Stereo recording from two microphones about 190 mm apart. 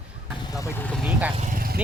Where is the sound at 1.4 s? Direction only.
45° right (ahead or behind).